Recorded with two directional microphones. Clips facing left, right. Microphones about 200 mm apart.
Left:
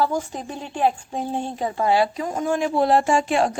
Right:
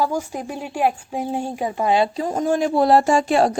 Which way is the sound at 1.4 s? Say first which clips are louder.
Right 1 dB; 15° right (ahead or behind).